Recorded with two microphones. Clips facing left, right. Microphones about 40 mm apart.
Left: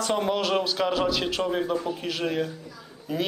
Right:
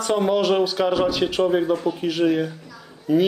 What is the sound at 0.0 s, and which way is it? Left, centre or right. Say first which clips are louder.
Speech: right 5 dB; centre.